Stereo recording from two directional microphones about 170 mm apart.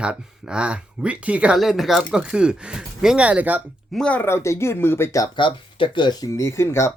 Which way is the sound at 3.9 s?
5° left (ahead or behind).